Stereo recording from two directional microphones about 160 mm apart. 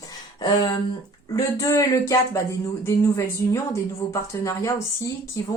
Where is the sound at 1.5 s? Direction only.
20° left (ahead or behind).